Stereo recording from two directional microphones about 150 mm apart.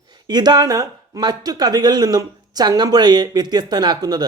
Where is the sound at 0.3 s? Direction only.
30° right (ahead or behind).